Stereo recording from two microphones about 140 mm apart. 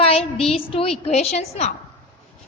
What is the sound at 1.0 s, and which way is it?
Speech, 50° left (ahead or behind).